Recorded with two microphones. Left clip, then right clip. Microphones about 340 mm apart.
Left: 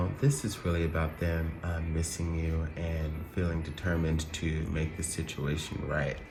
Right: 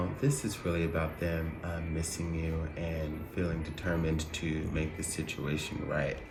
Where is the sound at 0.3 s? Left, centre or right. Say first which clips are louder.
Even; centre.